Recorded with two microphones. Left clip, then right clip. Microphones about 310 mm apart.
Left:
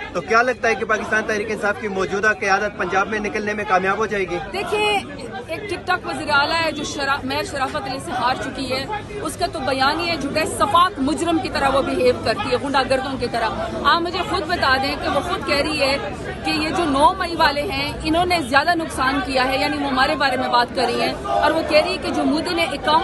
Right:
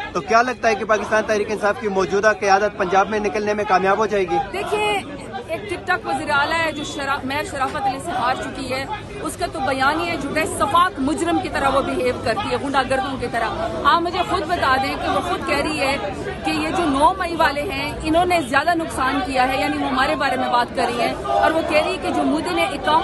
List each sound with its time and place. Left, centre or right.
0.1 s a man's voice: centre
9.8 s a man's voice: centre
15.1 s speech: centre
16.7 s speech: centre
17.0 s a woman's voice: centre